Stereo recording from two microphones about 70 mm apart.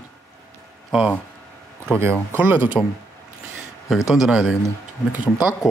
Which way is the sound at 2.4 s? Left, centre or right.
Right.